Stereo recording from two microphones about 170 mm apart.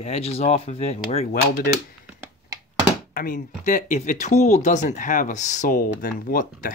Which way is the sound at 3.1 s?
55° left (ahead or behind).